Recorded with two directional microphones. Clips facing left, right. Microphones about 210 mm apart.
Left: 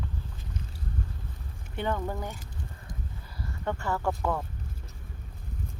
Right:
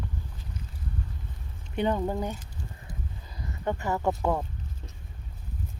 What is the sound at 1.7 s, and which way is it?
Speech, 20° right (ahead or behind).